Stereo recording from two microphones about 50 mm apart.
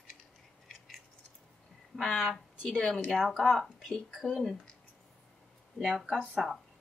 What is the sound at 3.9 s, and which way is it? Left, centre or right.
Speech, centre.